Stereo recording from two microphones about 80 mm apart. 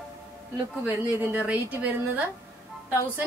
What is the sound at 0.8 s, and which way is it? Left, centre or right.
A woman's voice, centre.